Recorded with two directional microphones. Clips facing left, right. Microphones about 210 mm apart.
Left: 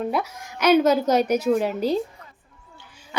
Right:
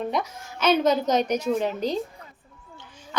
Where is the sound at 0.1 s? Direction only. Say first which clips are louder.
Left 2 dB; 10° left (ahead or behind).